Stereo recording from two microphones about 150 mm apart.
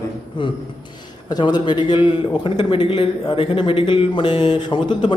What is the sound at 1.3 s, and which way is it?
A man's voice, 30° left (ahead or behind).